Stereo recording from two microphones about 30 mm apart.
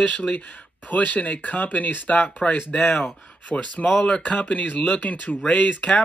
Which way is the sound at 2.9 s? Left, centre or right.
Left.